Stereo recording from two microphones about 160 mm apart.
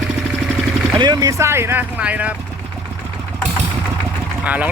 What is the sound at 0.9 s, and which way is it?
Speech, 25° right (ahead or behind).